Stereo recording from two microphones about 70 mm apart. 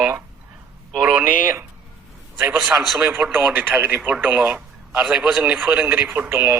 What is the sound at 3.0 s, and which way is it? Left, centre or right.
Speech, right.